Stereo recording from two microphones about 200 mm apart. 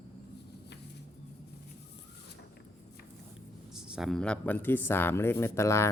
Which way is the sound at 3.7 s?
5° right (ahead or behind).